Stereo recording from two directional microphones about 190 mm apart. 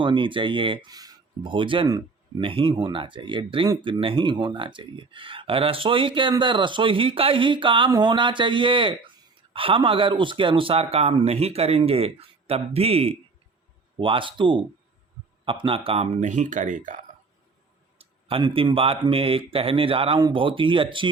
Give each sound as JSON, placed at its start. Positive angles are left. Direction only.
{"t": 0.0, "sound": "speech", "side_deg": -25}
{"t": 18.0, "sound": "speech", "side_deg": -30}